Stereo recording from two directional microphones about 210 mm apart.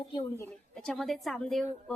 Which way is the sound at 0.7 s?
5° left (ahead or behind).